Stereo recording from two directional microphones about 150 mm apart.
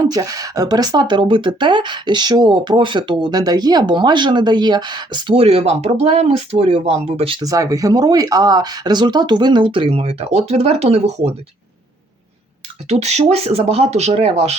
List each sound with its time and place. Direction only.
0.0 s speech: 25° right (ahead or behind)
7.4 s speech: 25° right (ahead or behind); by 11.3 s 45° right (ahead or behind)
12.9 s speech: 45° right (ahead or behind)